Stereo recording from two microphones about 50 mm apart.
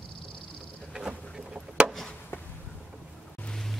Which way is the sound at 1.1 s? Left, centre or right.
Centre.